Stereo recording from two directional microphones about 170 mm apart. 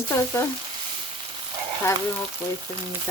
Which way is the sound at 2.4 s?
15° left (ahead or behind).